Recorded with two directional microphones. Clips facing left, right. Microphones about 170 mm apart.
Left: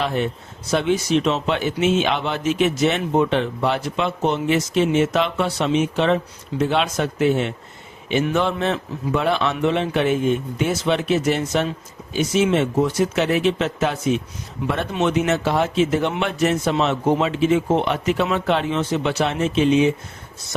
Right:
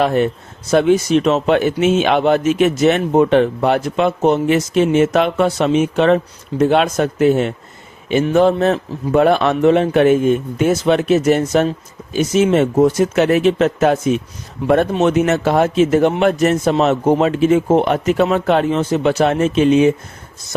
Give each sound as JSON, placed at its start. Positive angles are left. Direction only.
{"t": 0.0, "sound": "speech", "side_deg": -50}